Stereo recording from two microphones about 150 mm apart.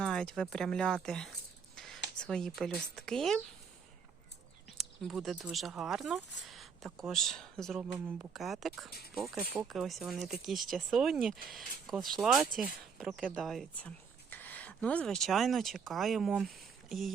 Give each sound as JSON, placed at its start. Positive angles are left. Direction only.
{"t": 0.0, "sound": "speech", "side_deg": 5}
{"t": 4.8, "sound": "speech", "side_deg": 0}
{"t": 14.3, "sound": "speech", "side_deg": 10}